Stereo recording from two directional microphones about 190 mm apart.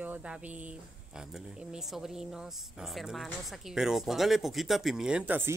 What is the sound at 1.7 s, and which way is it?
A woman's voice, 5° right (ahead or behind).